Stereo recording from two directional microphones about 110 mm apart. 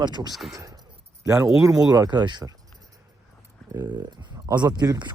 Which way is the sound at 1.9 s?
40° right (ahead or behind).